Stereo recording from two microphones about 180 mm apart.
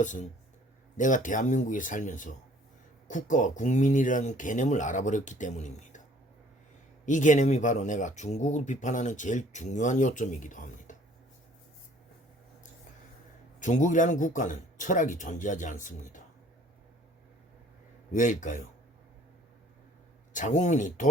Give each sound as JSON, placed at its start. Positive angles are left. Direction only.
{"t": 0.0, "sound": "speech", "side_deg": 45}
{"t": 7.0, "sound": "speech", "side_deg": 45}
{"t": 13.6, "sound": "speech", "side_deg": 45}
{"t": 18.1, "sound": "speech", "side_deg": 45}
{"t": 20.3, "sound": "speech", "side_deg": 45}